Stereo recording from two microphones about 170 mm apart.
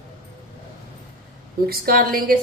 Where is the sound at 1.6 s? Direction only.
60° right (ahead or behind).